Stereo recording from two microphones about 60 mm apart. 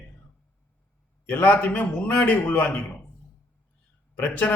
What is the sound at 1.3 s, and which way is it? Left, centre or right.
A man's voice, left.